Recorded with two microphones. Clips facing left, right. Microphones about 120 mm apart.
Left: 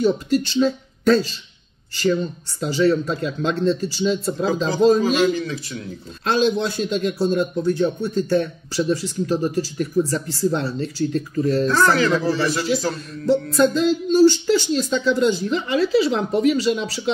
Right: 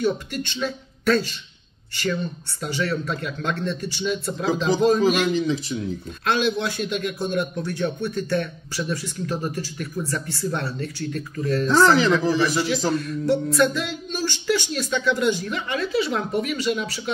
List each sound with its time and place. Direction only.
0.0 s speech: 35° left (ahead or behind)
2.6 s a man's voice: 30° left (ahead or behind)
5.0 s a man's voice: 15° right (ahead or behind)
6.2 s a man's voice: 30° left (ahead or behind)
11.6 s a man's voice: 20° right (ahead or behind)
12.9 s a man's voice: 30° left (ahead or behind)